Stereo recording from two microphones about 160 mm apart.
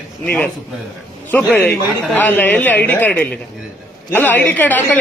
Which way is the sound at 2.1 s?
10° left (ahead or behind).